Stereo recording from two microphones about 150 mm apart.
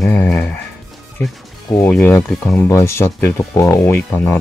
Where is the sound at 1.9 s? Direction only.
10° left (ahead or behind).